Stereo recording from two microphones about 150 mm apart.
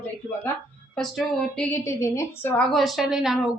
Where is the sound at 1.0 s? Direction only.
Centre (ahead or behind).